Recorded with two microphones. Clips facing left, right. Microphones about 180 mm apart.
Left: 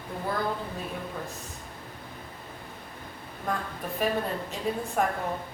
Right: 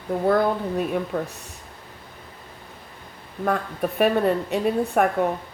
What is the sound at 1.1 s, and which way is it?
Speech, 70° right (ahead or behind).